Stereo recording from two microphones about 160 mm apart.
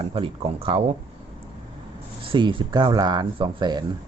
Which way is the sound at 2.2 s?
30° right (ahead or behind).